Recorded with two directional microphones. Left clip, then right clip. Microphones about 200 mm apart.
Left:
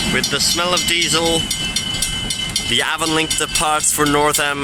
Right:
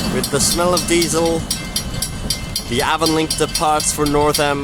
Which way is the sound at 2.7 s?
5° right (ahead or behind).